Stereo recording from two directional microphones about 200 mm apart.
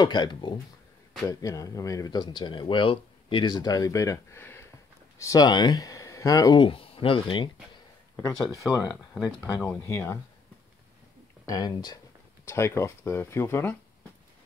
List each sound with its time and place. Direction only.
0.0 s speech: 20° left (ahead or behind)
8.6 s speech: 15° left (ahead or behind)
11.4 s speech: 20° left (ahead or behind)